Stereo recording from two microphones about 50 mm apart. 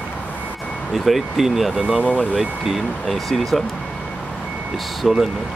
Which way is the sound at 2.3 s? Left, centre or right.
Centre.